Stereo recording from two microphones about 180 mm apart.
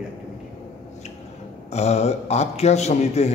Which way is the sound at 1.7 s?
35° left (ahead or behind).